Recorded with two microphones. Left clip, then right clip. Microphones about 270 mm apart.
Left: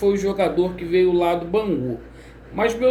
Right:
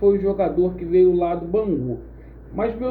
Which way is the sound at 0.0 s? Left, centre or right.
Centre.